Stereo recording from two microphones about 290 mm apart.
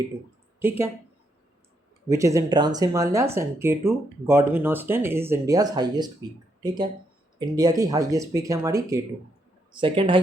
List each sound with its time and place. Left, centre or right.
2.0 s speech: centre